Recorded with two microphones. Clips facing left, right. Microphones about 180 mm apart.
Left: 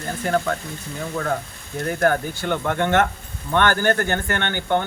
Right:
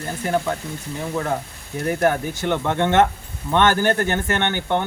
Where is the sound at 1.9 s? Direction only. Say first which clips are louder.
Right 1 dB; 20° right (ahead or behind).